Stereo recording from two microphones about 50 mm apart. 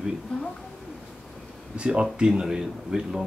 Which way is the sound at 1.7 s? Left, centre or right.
Right.